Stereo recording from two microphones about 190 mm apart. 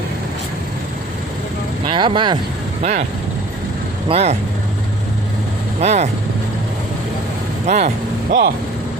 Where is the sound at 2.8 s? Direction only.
40° right (ahead or behind).